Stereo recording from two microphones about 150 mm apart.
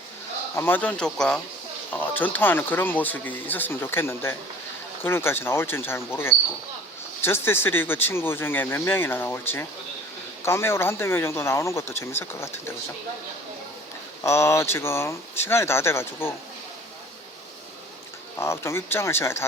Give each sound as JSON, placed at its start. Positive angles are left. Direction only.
{"t": 0.5, "sound": "speech", "side_deg": 15}
{"t": 14.3, "sound": "speech", "side_deg": 20}
{"t": 18.3, "sound": "speech", "side_deg": 20}